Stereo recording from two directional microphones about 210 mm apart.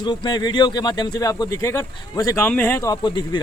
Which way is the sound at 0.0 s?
20° left (ahead or behind).